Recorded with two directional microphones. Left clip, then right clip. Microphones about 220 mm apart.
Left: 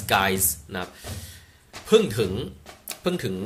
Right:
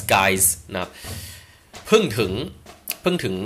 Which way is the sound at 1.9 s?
5° right (ahead or behind).